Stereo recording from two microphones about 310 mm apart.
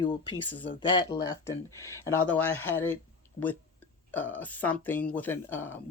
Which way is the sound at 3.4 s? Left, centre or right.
Left.